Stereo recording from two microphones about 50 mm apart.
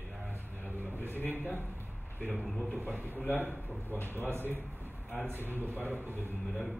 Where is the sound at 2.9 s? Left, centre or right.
Right.